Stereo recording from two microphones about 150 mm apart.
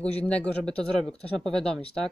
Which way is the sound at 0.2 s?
10° left (ahead or behind).